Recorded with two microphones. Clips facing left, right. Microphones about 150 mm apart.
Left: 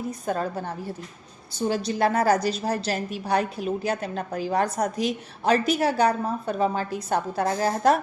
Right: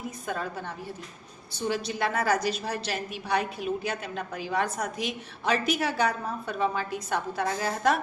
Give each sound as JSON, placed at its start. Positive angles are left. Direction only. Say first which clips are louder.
{"t": 0.3, "sound": "a woman's voice", "louder": "left 5 dB", "side_deg": 35}